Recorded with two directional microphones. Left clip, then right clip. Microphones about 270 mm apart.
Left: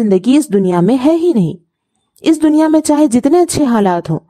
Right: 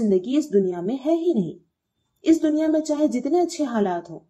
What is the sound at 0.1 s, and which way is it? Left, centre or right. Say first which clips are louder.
Speech: left 9 dB; left.